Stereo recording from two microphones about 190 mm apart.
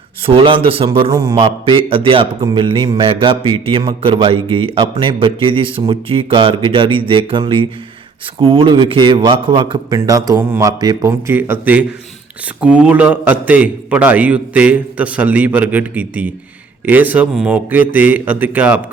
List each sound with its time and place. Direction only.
0.2 s a man's voice: 30° right (ahead or behind); by 18.8 s 10° right (ahead or behind)